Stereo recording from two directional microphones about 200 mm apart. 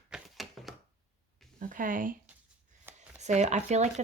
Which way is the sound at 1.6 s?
40° right (ahead or behind).